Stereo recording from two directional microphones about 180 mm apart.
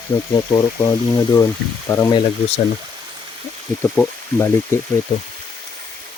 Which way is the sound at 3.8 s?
15° left (ahead or behind).